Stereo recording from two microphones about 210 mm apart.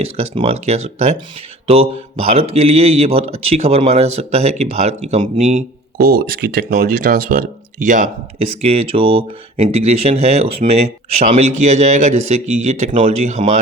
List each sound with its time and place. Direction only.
0.0 s speech: 30° right (ahead or behind)